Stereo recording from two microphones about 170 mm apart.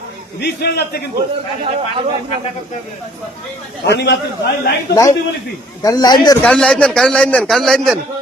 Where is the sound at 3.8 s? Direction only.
90° left.